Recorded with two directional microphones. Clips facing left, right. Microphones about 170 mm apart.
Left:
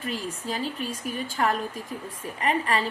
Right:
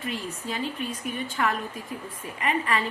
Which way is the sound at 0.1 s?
35° left (ahead or behind).